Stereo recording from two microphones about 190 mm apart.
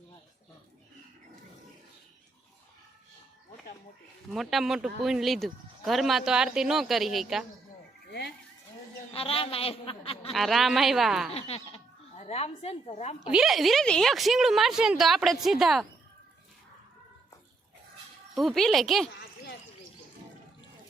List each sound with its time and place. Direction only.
4.3 s speech: centre (ahead or behind)
9.1 s a woman's voice: 30° left (ahead or behind)
10.3 s speech: centre (ahead or behind)
11.3 s speech: 30° left (ahead or behind)
13.1 s speech: 5° right (ahead or behind)
18.3 s speech: centre (ahead or behind)